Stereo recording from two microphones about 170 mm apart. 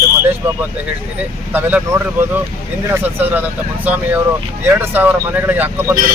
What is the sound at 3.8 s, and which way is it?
Speech, 10° right (ahead or behind).